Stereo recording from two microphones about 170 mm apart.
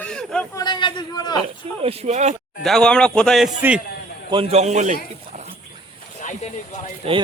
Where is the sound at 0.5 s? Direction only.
25° left (ahead or behind).